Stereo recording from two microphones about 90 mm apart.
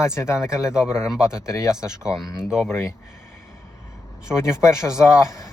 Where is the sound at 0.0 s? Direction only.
30° left (ahead or behind).